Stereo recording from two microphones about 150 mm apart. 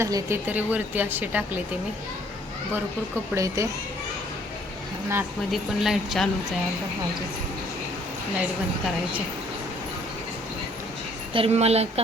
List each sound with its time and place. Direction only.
0.0 s speech: 20° right (ahead or behind)
3.3 s speech: 20° right (ahead or behind)
5.5 s speech: centre (ahead or behind)
11.3 s a woman's voice: 45° right (ahead or behind)